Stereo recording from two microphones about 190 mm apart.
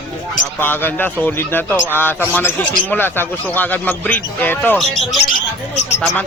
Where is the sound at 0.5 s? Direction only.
10° left (ahead or behind).